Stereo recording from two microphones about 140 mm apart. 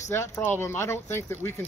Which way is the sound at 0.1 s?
15° left (ahead or behind).